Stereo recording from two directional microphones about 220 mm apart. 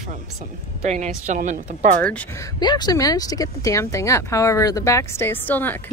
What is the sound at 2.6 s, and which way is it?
Speech, 20° left (ahead or behind).